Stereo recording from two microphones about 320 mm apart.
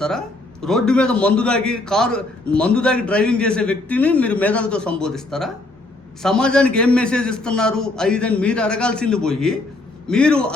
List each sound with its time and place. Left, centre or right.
0.0 s a man's voice: centre